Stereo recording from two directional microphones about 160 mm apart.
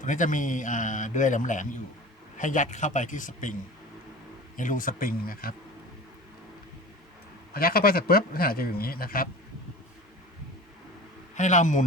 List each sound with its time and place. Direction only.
0.0 s a man's voice: 55° left (ahead or behind)
4.5 s speech: 55° left (ahead or behind)
7.5 s speech: 70° left (ahead or behind)
11.3 s a man's voice: 50° left (ahead or behind)